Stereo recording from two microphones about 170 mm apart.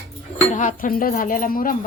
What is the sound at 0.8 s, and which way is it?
Speech, 55° left (ahead or behind).